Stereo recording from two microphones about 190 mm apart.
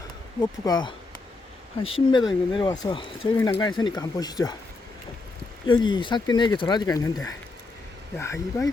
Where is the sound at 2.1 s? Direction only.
25° left (ahead or behind).